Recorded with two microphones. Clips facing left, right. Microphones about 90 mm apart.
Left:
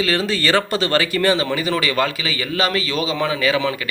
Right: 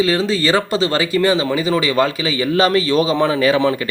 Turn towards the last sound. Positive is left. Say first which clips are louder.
# right 5 dB
turn(degrees=-30)  # may be behind; listen again after turning